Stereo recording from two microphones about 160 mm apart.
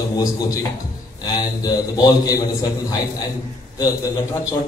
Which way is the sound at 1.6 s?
20° left (ahead or behind).